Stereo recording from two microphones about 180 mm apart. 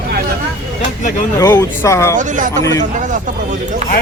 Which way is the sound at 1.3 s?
20° left (ahead or behind).